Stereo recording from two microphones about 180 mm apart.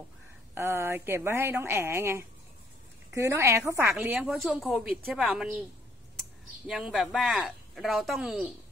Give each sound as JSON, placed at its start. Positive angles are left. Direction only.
{"t": 0.6, "sound": "a woman's voice", "side_deg": -15}
{"t": 4.3, "sound": "speech", "side_deg": 0}
{"t": 6.7, "sound": "speech", "side_deg": 0}